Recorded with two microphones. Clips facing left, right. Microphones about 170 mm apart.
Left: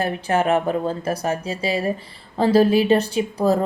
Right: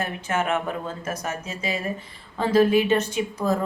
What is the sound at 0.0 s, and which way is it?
A woman's voice, 35° left (ahead or behind).